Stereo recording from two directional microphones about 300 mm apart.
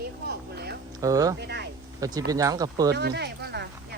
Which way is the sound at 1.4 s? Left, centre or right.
Right.